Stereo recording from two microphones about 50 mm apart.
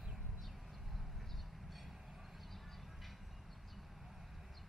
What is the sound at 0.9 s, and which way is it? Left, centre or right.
Train, centre.